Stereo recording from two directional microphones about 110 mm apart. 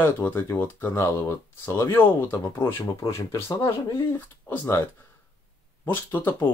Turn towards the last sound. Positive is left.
turn(degrees=20)  # may be behind; listen again after turning